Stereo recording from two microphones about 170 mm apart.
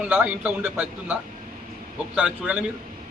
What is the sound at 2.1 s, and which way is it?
Speech, 5° right (ahead or behind).